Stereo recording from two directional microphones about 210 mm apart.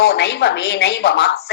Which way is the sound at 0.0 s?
50° left (ahead or behind).